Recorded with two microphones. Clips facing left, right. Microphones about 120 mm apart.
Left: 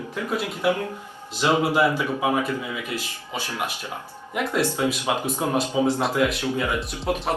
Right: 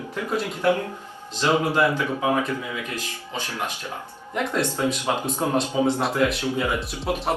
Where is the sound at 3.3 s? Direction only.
15° left (ahead or behind).